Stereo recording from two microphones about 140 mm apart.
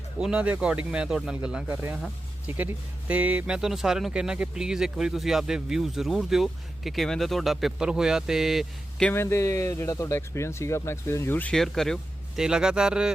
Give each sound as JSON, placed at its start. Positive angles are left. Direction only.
{"t": 0.2, "sound": "speech", "side_deg": -5}
{"t": 9.1, "sound": "speech", "side_deg": 20}